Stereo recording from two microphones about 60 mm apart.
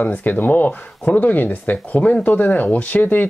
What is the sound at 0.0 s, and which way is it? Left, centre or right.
Speech, left.